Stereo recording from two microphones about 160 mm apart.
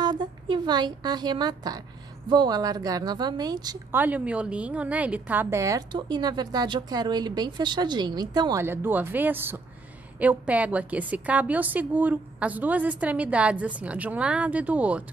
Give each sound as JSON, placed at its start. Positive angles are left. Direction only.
{"t": 0.0, "sound": "a woman's voice", "side_deg": -25}
{"t": 3.9, "sound": "a woman's voice", "side_deg": -10}
{"t": 8.6, "sound": "a woman's voice", "side_deg": -15}